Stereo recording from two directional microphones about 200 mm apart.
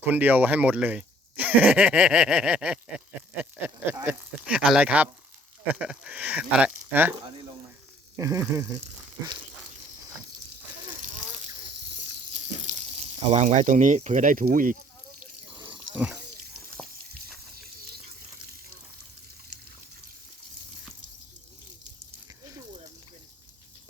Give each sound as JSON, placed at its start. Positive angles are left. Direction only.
{"t": 0.0, "sound": "speech", "side_deg": -10}
{"t": 13.3, "sound": "speech", "side_deg": -35}
{"t": 15.2, "sound": "water", "side_deg": -25}
{"t": 17.5, "sound": "a sound", "side_deg": -50}